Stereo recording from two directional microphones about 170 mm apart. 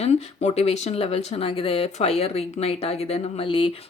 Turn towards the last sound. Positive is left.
turn(degrees=30)  # may be behind; listen again after turning